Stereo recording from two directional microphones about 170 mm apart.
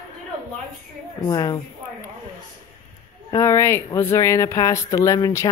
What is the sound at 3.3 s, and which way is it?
Speech, 15° left (ahead or behind).